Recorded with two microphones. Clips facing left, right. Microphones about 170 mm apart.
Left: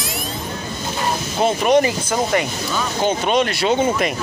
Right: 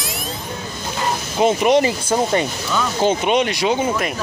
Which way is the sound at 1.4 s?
20° right (ahead or behind).